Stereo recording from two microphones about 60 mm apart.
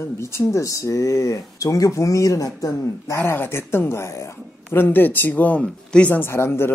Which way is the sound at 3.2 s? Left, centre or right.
Left.